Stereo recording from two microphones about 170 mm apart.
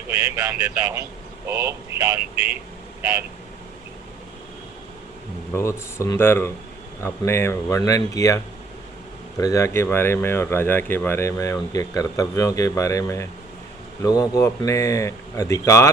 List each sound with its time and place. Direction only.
0.1 s speech: 20° right (ahead or behind)
5.5 s speech: 15° left (ahead or behind)
9.4 s speech: 20° left (ahead or behind)